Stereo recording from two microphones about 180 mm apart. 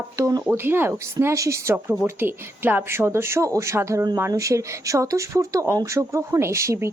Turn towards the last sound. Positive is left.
turn(degrees=-15)  # may be behind; listen again after turning